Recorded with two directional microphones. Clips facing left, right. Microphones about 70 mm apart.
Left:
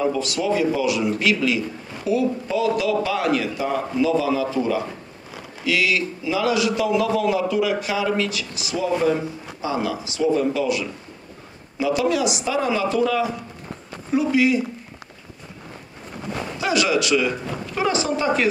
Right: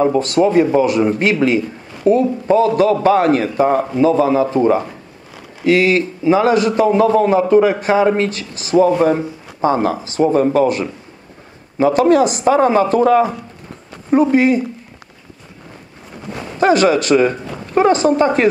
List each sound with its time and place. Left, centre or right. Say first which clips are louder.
0.0 s a man's voice: right 9 dB; right
16.5 s a man's voice: right 9 dB; right